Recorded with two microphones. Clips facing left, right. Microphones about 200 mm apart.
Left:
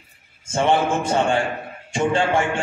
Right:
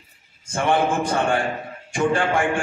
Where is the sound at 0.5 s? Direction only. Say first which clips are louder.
Left 1 dB; 25° left (ahead or behind).